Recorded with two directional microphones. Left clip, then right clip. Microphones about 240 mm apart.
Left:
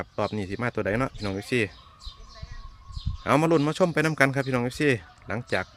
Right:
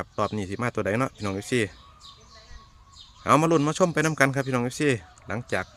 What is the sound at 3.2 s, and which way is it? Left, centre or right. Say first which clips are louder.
A man's voice: right 1 dB; centre.